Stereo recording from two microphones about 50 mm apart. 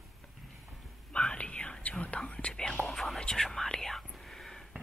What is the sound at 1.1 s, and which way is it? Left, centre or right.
Whispering, centre.